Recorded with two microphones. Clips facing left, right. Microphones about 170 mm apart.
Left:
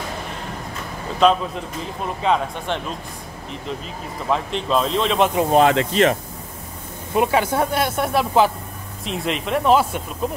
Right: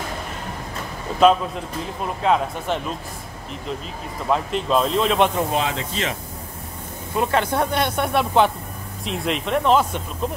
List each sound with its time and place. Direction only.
1.2 s speech: 5° right (ahead or behind)
4.3 s speech: 5° right (ahead or behind)
5.5 s speech: 60° left (ahead or behind)
7.2 s speech: 10° left (ahead or behind)